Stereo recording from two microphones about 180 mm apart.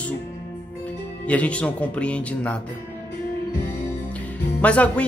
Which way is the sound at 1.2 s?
10° left (ahead or behind).